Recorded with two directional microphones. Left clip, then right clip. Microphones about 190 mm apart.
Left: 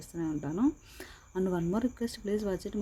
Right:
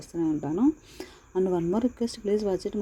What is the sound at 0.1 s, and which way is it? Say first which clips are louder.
Speech: right 7 dB; centre (ahead or behind).